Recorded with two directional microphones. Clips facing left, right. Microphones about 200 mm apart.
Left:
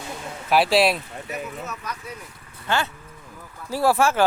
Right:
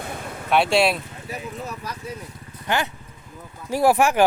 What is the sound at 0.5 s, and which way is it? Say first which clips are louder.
Speech: even; centre (ahead or behind).